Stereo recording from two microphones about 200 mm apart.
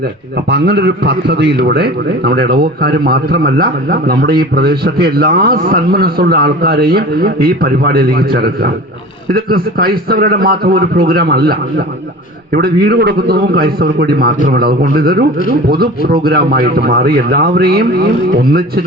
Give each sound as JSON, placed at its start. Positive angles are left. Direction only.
{"t": 0.5, "sound": "a man's voice", "side_deg": -55}
{"t": 12.5, "sound": "a man's voice", "side_deg": -50}